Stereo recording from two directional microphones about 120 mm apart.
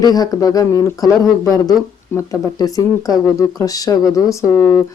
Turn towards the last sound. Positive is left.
turn(degrees=20)  # may be behind; listen again after turning